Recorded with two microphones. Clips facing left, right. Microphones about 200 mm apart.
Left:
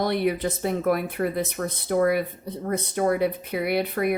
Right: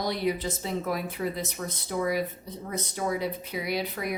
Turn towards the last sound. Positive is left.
turn(degrees=60)  # may be behind; listen again after turning